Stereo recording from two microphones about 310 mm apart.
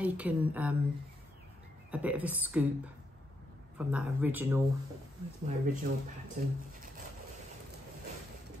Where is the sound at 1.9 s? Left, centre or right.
Centre.